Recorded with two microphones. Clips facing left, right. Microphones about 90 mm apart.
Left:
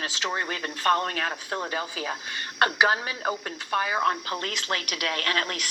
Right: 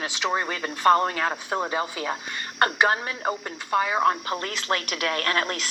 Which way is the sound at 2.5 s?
5° left (ahead or behind).